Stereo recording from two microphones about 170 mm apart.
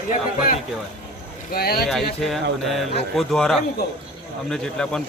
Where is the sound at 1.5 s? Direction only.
65° left (ahead or behind).